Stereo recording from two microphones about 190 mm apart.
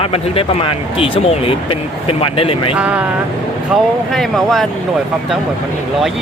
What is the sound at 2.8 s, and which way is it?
Speech, 5° right (ahead or behind).